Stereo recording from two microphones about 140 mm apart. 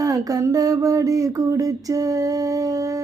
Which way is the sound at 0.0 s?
25° right (ahead or behind).